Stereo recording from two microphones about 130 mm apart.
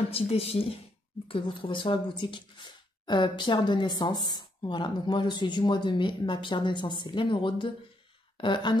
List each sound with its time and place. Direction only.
0.1 s speech: 50° left (ahead or behind)